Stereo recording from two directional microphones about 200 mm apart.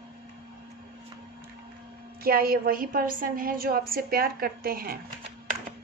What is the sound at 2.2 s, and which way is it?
A woman's voice, 45° right (ahead or behind).